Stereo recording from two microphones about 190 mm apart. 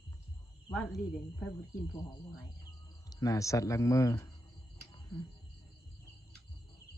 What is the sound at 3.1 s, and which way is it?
Speech, 20° left (ahead or behind).